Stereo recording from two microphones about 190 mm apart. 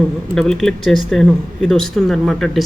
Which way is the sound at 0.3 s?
Centre (ahead or behind).